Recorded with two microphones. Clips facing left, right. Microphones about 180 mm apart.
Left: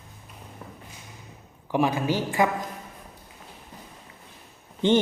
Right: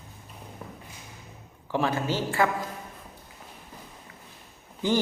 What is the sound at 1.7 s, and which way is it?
Speech, 15° left (ahead or behind).